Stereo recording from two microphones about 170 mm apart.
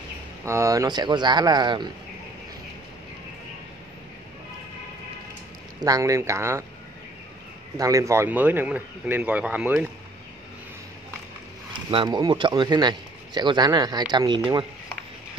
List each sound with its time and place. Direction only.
0.5 s a man's voice: 20° right (ahead or behind)
5.8 s speech: 20° right (ahead or behind)
7.7 s speech: 20° right (ahead or behind)
11.9 s a man's voice: 25° right (ahead or behind)